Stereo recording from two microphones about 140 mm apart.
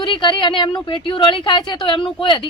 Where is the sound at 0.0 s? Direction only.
35° left (ahead or behind).